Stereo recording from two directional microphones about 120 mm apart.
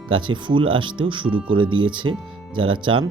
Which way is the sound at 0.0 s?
40° right (ahead or behind).